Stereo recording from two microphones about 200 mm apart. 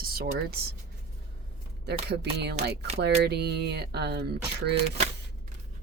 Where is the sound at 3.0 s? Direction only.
55° right (ahead or behind).